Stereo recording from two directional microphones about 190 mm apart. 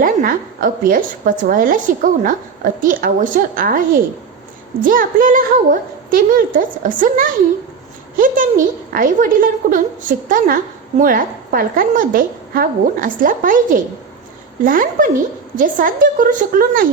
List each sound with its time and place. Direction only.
0.0 s a woman's voice: 45° right (ahead or behind)